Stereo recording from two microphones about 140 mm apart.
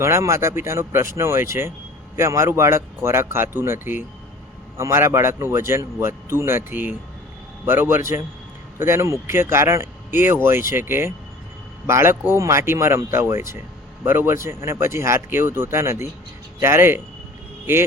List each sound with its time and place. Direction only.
0.0 s speech: 20° right (ahead or behind)